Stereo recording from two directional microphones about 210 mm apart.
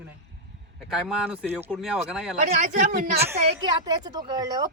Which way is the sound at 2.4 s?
35° right (ahead or behind).